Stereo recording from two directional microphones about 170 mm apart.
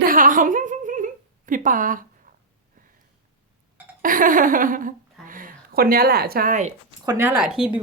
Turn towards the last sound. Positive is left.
turn(degrees=-5)  # may be behind; listen again after turning